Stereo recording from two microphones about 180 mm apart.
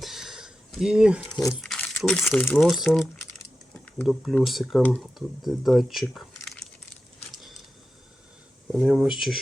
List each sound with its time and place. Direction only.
0.0 s a sound: centre (ahead or behind)
1.5 s crumpling: 5° left (ahead or behind)
2.4 s speech: 5° left (ahead or behind)
4.0 s speech: centre (ahead or behind)
8.7 s speech: centre (ahead or behind)